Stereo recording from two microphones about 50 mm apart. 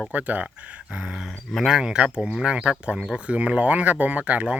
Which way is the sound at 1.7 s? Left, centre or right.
Centre.